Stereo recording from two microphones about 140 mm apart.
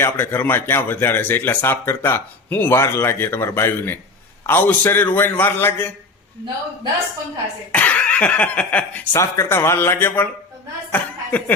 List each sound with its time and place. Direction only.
0.0 s speech: 15° left (ahead or behind)
7.7 s speech: 10° left (ahead or behind)
9.1 s speech: 20° left (ahead or behind)